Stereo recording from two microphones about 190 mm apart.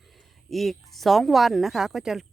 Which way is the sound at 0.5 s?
Centre (ahead or behind).